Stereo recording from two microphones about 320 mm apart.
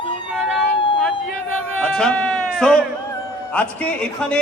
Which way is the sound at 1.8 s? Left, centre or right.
Centre.